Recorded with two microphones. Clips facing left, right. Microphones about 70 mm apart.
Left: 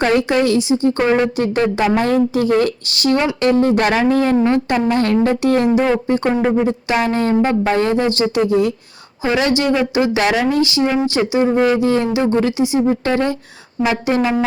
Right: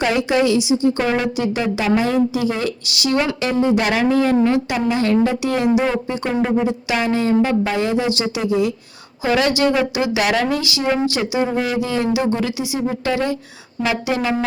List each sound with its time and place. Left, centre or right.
0.0 s a woman's voice: left
9.2 s a woman's voice: left